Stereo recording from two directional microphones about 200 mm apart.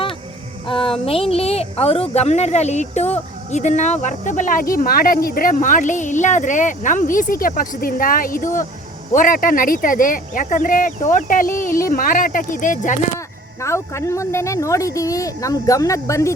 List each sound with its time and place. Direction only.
0.7 s speech: 25° left (ahead or behind)
13.6 s speech: 15° left (ahead or behind)